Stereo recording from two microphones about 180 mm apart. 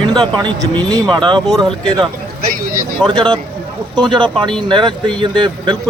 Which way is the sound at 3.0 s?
25° right (ahead or behind).